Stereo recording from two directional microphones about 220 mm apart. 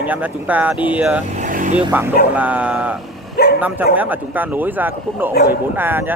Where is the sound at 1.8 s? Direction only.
10° right (ahead or behind).